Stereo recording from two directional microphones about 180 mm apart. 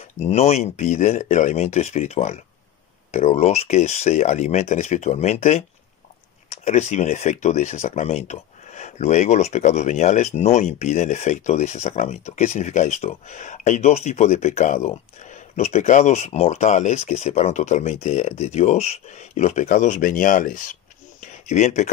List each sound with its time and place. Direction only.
0.2 s speech: 35° left (ahead or behind)